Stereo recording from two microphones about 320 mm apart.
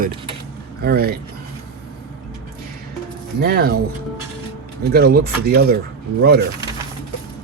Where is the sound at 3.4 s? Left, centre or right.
Right.